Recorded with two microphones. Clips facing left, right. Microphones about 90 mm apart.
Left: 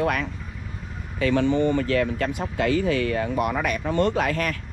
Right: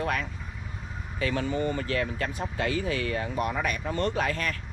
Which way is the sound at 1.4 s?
75° left (ahead or behind).